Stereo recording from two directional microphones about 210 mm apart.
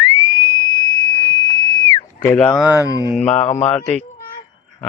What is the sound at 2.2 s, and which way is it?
Speech, 10° left (ahead or behind).